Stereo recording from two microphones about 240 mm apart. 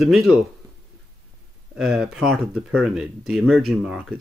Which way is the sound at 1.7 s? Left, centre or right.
Centre.